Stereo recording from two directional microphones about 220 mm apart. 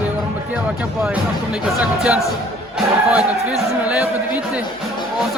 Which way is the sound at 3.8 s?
5° right (ahead or behind).